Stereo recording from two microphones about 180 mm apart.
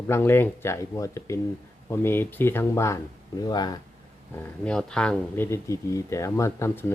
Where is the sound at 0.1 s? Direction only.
15° left (ahead or behind).